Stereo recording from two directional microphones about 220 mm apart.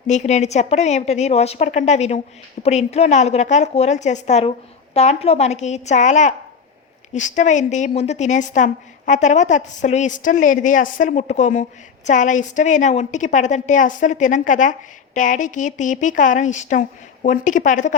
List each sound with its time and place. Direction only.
0.1 s a woman's voice: 35° left (ahead or behind)